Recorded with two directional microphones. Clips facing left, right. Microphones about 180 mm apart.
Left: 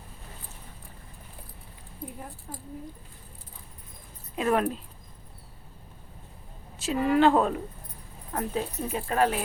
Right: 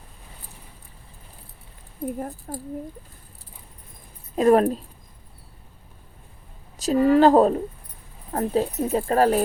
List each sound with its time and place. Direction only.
2.0 s speech: 45° right (ahead or behind)
4.4 s speech: 40° right (ahead or behind)
6.7 s speech: 40° right (ahead or behind)